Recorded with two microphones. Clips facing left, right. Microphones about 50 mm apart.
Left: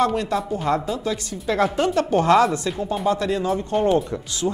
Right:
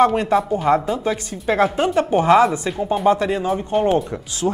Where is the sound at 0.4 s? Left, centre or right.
Centre.